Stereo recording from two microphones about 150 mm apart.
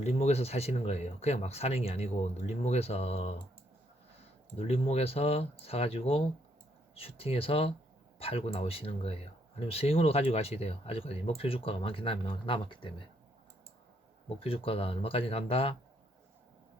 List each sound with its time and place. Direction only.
0.0 s speech: 45° left (ahead or behind)
4.5 s speech: 40° left (ahead or behind)
14.3 s speech: 40° left (ahead or behind)